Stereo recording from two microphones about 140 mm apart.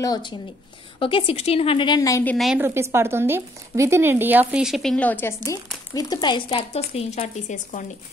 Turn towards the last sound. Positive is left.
turn(degrees=60)  # may be behind; listen again after turning